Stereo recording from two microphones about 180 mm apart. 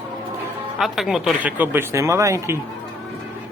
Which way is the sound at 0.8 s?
Centre (ahead or behind).